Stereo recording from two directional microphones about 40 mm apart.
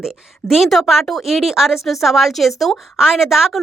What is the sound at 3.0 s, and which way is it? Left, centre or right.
Speech, centre.